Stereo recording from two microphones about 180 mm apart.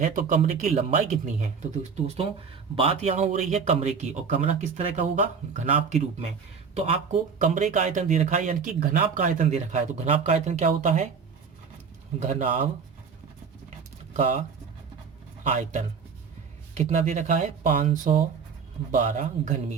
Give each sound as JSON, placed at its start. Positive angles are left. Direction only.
{"t": 0.0, "sound": "speech", "side_deg": -45}
{"t": 2.7, "sound": "speech", "side_deg": -35}
{"t": 12.2, "sound": "speech", "side_deg": -45}
{"t": 13.7, "sound": "a sound", "side_deg": -40}
{"t": 15.4, "sound": "speech", "side_deg": -40}